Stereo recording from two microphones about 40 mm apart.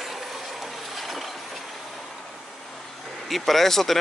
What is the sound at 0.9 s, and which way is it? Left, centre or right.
Mechanisms, centre.